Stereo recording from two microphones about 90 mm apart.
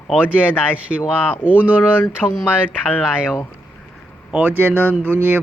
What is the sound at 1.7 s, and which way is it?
Speech, 20° left (ahead or behind).